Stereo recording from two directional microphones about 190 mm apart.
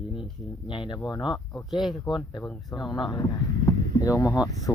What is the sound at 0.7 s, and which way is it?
Speech, 25° left (ahead or behind).